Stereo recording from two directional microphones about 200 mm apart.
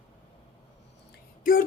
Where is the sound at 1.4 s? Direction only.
45° left (ahead or behind).